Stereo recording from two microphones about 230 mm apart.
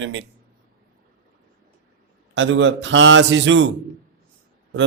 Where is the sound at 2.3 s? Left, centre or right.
Right.